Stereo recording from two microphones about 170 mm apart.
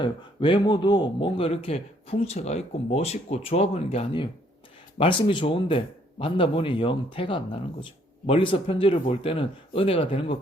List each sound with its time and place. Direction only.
0.0 s a man's voice: 30° left (ahead or behind)